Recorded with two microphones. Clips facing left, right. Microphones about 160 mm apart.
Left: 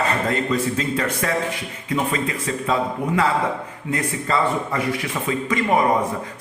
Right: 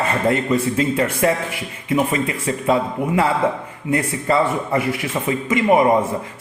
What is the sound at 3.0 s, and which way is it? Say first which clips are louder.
Speech: right 2 dB; 5° right (ahead or behind).